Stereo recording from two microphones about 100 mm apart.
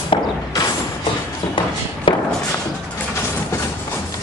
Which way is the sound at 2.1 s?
55° left (ahead or behind).